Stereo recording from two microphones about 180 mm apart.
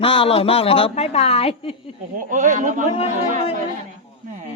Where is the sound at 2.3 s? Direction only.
45° right (ahead or behind).